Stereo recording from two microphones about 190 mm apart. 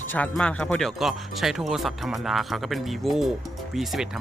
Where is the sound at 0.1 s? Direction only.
5° left (ahead or behind).